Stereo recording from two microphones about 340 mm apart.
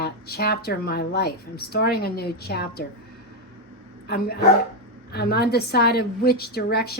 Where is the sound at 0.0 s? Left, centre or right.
Left.